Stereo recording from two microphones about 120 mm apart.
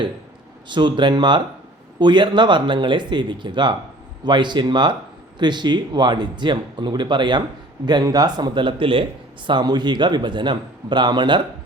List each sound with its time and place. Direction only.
0.7 s speech: 40° right (ahead or behind)